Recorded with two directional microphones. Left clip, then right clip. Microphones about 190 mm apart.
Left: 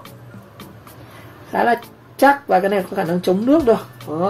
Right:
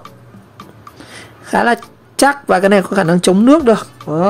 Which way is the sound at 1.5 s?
55° right (ahead or behind).